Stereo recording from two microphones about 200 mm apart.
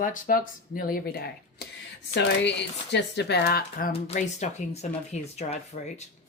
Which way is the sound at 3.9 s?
35° left (ahead or behind).